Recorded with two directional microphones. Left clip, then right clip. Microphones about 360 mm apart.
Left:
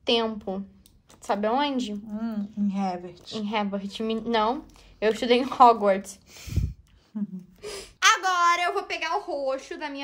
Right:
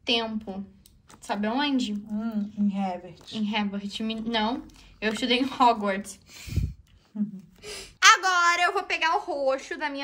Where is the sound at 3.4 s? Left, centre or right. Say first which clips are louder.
Left 2 dB; left.